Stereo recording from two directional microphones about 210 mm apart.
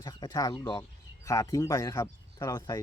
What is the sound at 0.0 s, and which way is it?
Speech, 20° left (ahead or behind).